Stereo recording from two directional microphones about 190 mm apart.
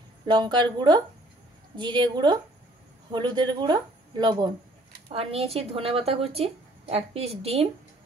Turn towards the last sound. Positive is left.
turn(degrees=-35)  # may be behind; listen again after turning